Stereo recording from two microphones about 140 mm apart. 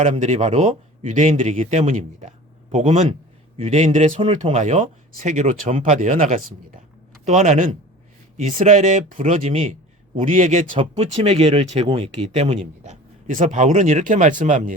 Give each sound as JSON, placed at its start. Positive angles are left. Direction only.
{"t": 0.0, "sound": "speech", "side_deg": -55}
{"t": 1.4, "sound": "speech", "side_deg": -50}
{"t": 7.3, "sound": "speech", "side_deg": -55}
{"t": 10.2, "sound": "speech", "side_deg": -65}
{"t": 10.8, "sound": "speech", "side_deg": -45}